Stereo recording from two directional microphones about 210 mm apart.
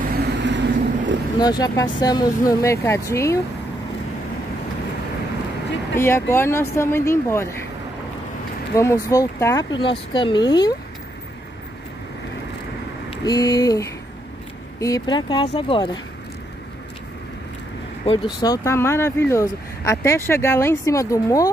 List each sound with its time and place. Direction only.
0.2 s vehicle: 60° right (ahead or behind)
1.4 s speech: 20° left (ahead or behind)
5.9 s speech: 10° left (ahead or behind)
8.7 s speech: 15° left (ahead or behind)
13.2 s speech: 20° left (ahead or behind)
18.0 s speech: 25° left (ahead or behind)